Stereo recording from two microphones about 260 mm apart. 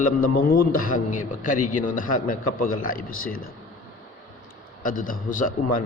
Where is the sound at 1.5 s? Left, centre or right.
Left.